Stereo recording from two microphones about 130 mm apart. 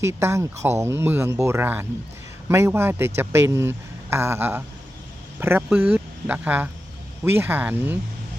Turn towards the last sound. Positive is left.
turn(degrees=-15)  # may be behind; listen again after turning